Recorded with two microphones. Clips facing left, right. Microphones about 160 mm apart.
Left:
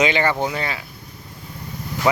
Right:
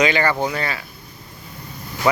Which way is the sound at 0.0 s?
20° left (ahead or behind).